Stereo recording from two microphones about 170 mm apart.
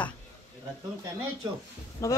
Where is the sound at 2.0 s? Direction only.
15° left (ahead or behind).